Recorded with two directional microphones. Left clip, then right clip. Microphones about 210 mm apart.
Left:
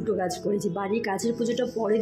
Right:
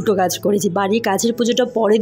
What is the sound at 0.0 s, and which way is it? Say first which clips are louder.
Speech: right 10 dB; 45° right (ahead or behind).